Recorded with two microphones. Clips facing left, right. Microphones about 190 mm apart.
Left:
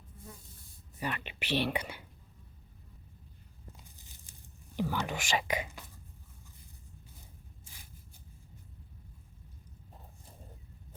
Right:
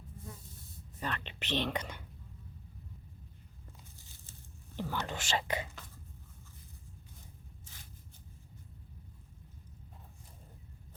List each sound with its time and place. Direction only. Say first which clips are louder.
0.9 s speech: left 2 dB; 10° left (ahead or behind)
4.8 s speech: left 4 dB; 10° left (ahead or behind)